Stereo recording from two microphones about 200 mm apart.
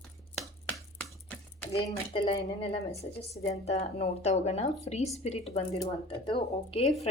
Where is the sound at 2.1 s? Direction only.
25° left (ahead or behind).